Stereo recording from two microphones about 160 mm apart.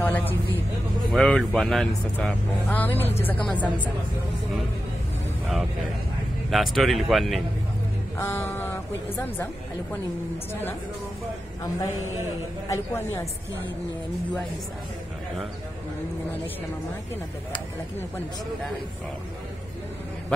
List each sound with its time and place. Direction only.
0.0 s speech: 10° left (ahead or behind)
6.5 s speech: centre (ahead or behind)
8.2 s speech: 15° left (ahead or behind)
12.6 s speech: 20° left (ahead or behind)